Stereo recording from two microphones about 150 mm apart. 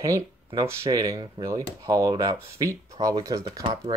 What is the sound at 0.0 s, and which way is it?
Speech, 25° right (ahead or behind).